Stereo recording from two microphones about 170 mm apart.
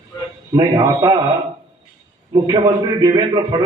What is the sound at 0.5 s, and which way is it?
Speech, 25° right (ahead or behind).